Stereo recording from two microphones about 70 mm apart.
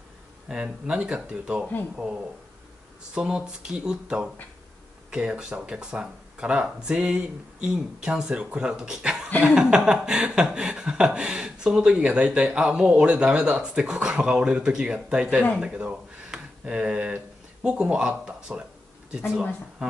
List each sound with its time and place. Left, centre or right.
0.5 s chuckle: centre
3.2 s chuckle: centre
15.6 s speech: centre